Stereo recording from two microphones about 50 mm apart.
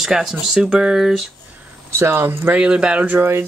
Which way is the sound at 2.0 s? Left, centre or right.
Right.